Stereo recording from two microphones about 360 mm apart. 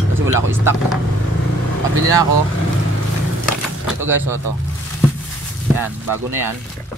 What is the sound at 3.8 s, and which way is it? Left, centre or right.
Speech, centre.